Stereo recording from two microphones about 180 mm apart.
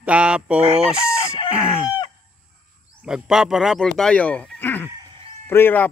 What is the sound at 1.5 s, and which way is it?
Speech, 5° right (ahead or behind).